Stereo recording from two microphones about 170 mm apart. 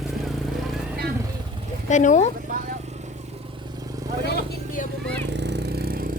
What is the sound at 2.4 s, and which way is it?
Vehicle, 50° right (ahead or behind).